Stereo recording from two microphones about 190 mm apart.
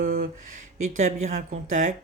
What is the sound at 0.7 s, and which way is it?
Speech, 40° right (ahead or behind).